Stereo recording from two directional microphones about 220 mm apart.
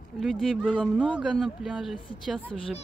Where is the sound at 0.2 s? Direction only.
Centre (ahead or behind).